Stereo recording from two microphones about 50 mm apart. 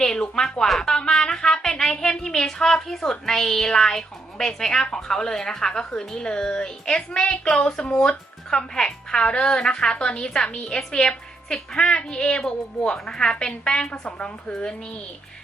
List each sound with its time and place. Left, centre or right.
0.0 s music: centre
0.8 s a woman's voice: centre